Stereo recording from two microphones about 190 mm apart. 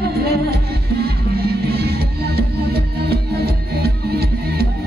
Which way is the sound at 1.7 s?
55° right (ahead or behind).